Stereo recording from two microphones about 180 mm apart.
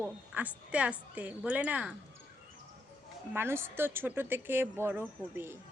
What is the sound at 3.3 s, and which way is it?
A woman's voice, 15° right (ahead or behind).